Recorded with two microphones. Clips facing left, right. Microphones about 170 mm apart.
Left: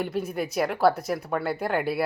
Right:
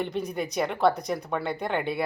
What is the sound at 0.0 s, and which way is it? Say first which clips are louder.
A woman's voice: left 1 dB; 5° left (ahead or behind).